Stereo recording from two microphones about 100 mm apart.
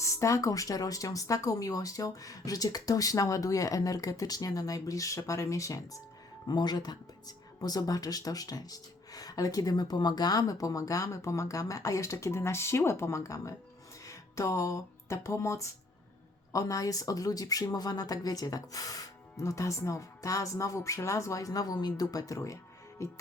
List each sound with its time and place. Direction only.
0.0 s speech: 30° left (ahead or behind)
6.5 s speech: 45° left (ahead or behind)
23.0 s music: 30° left (ahead or behind)